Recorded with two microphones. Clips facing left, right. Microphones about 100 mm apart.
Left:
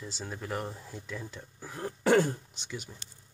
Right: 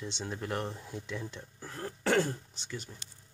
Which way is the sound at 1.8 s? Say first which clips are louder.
Left 4 dB; 20° left (ahead or behind).